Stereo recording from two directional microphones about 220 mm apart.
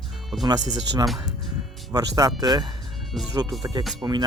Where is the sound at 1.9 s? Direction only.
15° right (ahead or behind).